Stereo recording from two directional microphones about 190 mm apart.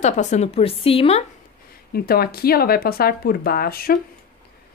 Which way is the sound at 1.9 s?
55° left (ahead or behind).